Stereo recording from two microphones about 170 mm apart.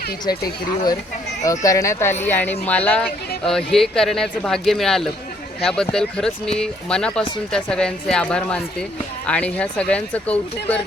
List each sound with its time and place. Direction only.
0.3 s speech: 20° left (ahead or behind)